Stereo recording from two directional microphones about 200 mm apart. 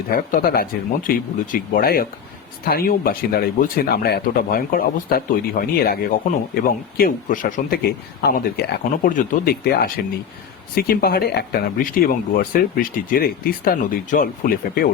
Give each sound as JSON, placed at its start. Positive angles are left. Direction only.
{"t": 0.1, "sound": "speech", "side_deg": 45}